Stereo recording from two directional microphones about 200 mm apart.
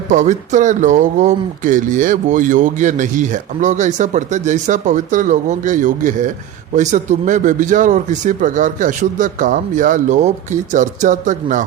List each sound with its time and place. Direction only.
0.1 s speech: 40° right (ahead or behind)